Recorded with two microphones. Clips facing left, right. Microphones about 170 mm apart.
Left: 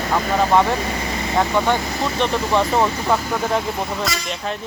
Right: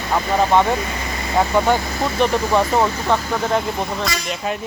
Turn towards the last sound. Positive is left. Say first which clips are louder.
# right 1 dB
turn(degrees=-5)  # may be behind; listen again after turning